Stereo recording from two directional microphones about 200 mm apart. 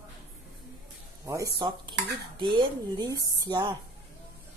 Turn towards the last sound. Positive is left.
turn(degrees=-20)  # may be behind; listen again after turning